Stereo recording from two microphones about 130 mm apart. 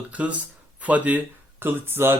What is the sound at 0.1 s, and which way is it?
A man's voice, 10° right (ahead or behind).